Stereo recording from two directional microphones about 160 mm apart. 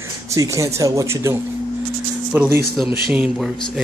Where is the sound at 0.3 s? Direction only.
20° right (ahead or behind).